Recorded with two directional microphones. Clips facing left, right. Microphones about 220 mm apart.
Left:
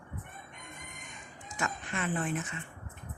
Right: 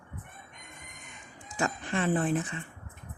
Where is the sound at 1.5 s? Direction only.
35° right (ahead or behind).